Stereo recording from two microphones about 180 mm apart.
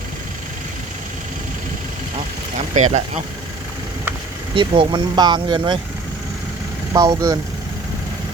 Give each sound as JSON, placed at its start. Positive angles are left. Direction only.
{"t": 2.7, "sound": "speech", "side_deg": -40}
{"t": 4.5, "sound": "speech", "side_deg": -30}
{"t": 6.9, "sound": "speech", "side_deg": -20}